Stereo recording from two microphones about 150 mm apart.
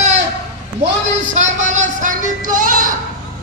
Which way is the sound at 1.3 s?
55° right (ahead or behind).